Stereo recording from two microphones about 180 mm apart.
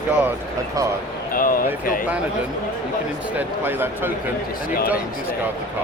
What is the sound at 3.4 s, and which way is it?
Speech, 10° right (ahead or behind).